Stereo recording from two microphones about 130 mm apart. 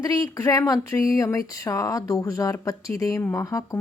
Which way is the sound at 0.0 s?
30° left (ahead or behind).